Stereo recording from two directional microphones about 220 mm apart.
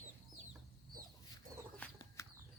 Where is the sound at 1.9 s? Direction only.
15° left (ahead or behind).